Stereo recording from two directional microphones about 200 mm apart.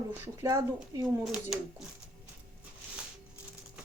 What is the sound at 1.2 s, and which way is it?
Speech, 5° right (ahead or behind).